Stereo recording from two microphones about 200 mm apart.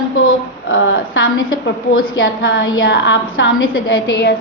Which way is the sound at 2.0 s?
50° left (ahead or behind).